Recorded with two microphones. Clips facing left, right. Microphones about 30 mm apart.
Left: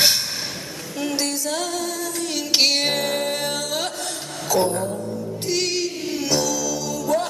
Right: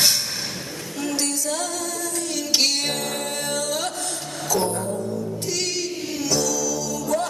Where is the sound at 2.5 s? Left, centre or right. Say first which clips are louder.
Left 3 dB; centre.